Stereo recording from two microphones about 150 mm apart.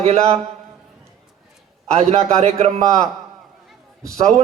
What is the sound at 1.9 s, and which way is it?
Speech, 45° right (ahead or behind).